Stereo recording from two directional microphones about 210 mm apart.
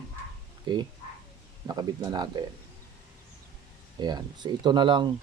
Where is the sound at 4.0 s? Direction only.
20° right (ahead or behind).